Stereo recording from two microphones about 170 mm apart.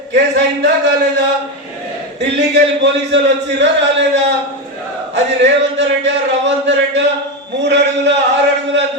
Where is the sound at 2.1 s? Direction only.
90° right.